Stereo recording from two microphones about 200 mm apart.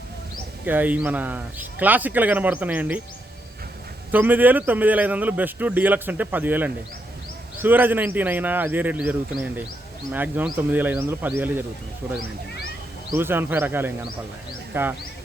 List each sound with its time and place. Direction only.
0.6 s a man's voice: 10° right (ahead or behind)
4.1 s a man's voice: 10° right (ahead or behind)